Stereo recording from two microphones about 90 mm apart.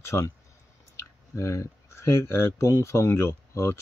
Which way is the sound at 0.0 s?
30° left (ahead or behind).